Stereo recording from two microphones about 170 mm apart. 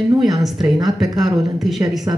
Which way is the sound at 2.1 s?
25° right (ahead or behind).